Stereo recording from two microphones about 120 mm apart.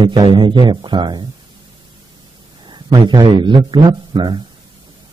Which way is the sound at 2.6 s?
40° right (ahead or behind).